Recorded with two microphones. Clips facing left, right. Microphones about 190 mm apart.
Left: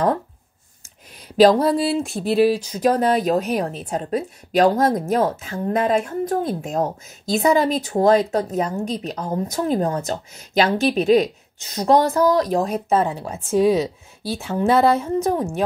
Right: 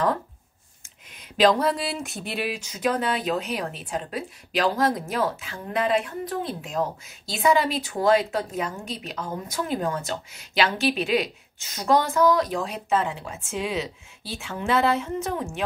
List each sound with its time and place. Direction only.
1.3 s speech: 35° left (ahead or behind)